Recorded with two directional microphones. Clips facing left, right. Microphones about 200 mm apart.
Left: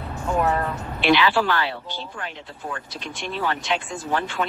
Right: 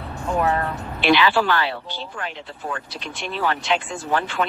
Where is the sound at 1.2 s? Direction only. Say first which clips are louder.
Right 1 dB; 80° right.